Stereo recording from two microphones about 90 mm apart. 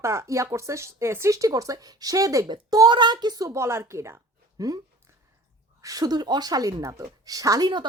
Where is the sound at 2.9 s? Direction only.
55° right (ahead or behind).